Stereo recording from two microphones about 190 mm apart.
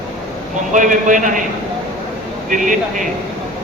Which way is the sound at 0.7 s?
45° right (ahead or behind).